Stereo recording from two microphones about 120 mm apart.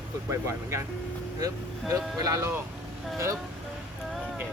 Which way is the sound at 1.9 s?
25° right (ahead or behind).